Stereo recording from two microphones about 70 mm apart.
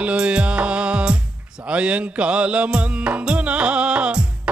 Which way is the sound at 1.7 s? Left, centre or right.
Centre.